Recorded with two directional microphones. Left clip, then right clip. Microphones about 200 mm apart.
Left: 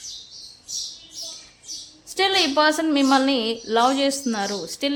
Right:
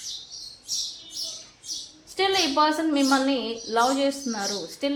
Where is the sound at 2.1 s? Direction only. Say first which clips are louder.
Left 3 dB; 35° left (ahead or behind).